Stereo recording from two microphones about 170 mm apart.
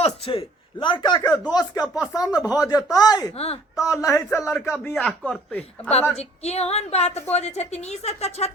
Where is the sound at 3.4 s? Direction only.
35° left (ahead or behind).